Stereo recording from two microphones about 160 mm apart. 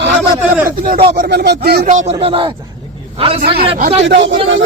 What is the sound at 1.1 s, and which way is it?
Speech, 90° right.